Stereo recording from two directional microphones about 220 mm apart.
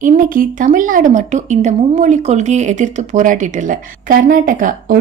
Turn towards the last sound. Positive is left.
turn(degrees=-40)  # may be behind; listen again after turning